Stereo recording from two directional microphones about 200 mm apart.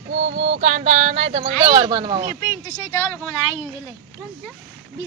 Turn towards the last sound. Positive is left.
turn(degrees=-5)  # may be behind; listen again after turning